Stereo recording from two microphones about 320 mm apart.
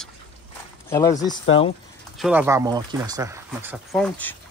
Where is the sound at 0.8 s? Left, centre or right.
Centre.